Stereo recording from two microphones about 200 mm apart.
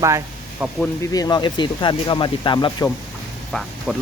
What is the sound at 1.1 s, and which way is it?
Speech, 20° left (ahead or behind).